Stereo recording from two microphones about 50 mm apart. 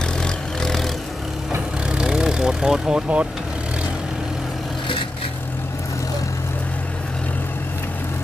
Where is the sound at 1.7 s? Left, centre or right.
Centre.